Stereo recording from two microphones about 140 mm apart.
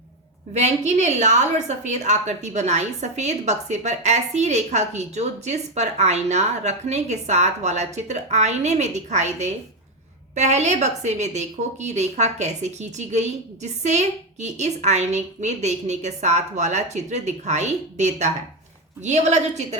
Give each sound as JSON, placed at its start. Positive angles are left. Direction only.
{"t": 0.5, "sound": "a woman's voice", "side_deg": -55}